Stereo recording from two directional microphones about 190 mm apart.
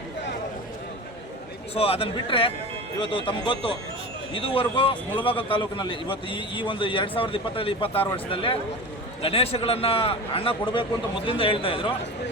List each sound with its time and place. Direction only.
1.7 s a man's voice: 30° left (ahead or behind)